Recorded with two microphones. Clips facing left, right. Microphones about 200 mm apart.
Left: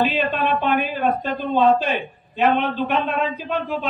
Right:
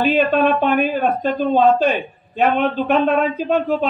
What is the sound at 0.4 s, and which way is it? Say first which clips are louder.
A man's voice: right 5 dB; 45° right (ahead or behind).